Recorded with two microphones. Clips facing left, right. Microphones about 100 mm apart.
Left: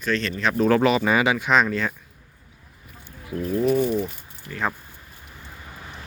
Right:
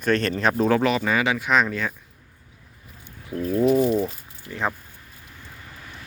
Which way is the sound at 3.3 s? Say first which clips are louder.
Right 2 dB; 35° right (ahead or behind).